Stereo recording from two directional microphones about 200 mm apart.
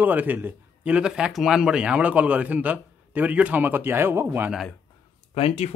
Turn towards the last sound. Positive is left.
turn(degrees=30)  # may be behind; listen again after turning